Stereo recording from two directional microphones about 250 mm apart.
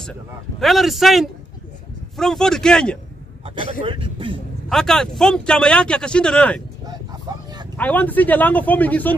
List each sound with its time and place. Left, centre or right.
0.6 s speech: centre
3.8 s speech: right
4.6 s speech: centre
6.9 s vehicle: centre
7.7 s speech: centre